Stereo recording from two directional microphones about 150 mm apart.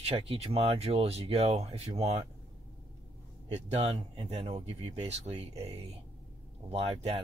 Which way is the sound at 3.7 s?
45° right (ahead or behind).